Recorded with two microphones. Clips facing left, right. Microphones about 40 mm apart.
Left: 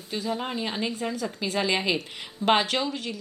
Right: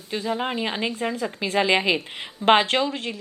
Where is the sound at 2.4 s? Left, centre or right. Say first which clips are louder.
Right 5 dB; right.